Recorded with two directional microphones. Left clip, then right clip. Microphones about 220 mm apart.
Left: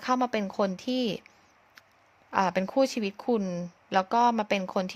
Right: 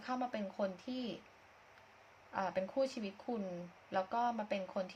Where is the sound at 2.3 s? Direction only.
50° left (ahead or behind).